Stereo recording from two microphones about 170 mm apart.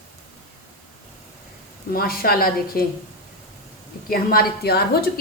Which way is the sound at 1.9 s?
60° left (ahead or behind).